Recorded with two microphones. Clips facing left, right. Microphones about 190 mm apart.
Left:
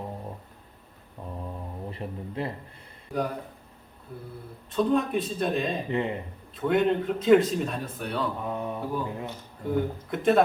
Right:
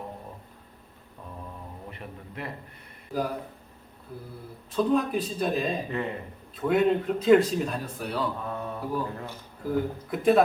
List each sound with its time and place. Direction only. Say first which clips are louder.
1.9 s speech: left 6 dB; 30° left (ahead or behind)
3.1 s a man's voice: even; centre (ahead or behind)
4.7 s a man's voice: even; centre (ahead or behind)
5.9 s speech: left 3 dB; 20° left (ahead or behind)
6.6 s a man's voice: right 1 dB; centre (ahead or behind)
8.4 s mantra: left 2 dB; 15° left (ahead or behind)
8.8 s speech: even; centre (ahead or behind)
9.0 s speech: left 2 dB; 15° left (ahead or behind)
9.6 s a man's voice: even; centre (ahead or behind)